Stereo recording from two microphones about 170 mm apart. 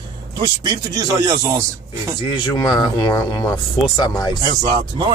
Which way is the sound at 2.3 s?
25° left (ahead or behind).